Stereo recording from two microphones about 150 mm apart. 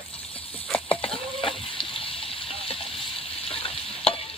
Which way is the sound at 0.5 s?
10° left (ahead or behind).